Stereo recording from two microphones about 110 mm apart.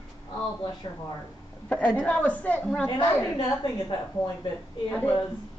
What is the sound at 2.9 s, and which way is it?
Speech, 45° left (ahead or behind).